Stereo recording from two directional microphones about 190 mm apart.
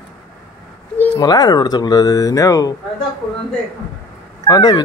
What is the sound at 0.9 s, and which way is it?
Speech, 15° left (ahead or behind).